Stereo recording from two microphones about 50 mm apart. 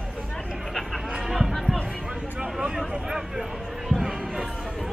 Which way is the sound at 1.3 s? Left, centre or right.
Centre.